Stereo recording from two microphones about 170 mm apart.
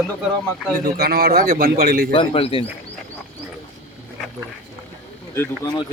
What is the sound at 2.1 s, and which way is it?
Speech, 30° left (ahead or behind).